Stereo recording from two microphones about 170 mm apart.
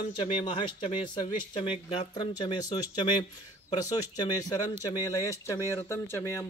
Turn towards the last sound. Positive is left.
turn(degrees=15)  # may be behind; listen again after turning